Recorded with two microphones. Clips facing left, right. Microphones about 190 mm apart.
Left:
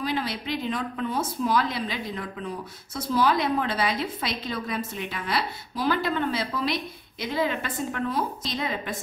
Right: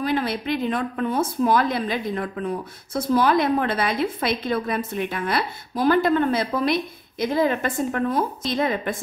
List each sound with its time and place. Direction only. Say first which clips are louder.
0.0 s a woman's voice: right 5 dB; 55° right (ahead or behind)